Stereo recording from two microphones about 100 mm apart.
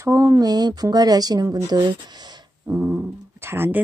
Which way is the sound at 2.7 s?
20° right (ahead or behind).